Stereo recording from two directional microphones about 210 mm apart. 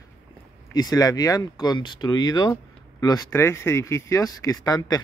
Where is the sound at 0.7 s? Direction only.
20° left (ahead or behind).